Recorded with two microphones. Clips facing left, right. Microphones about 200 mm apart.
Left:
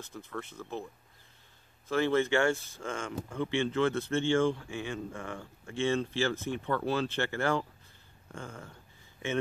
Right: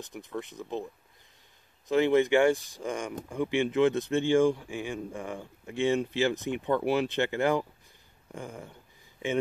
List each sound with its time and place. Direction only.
0.0 s speech: 15° right (ahead or behind)
1.9 s speech: 15° right (ahead or behind)